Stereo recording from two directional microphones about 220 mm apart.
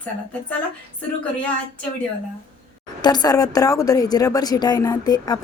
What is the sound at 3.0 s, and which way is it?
A woman's voice, 20° left (ahead or behind).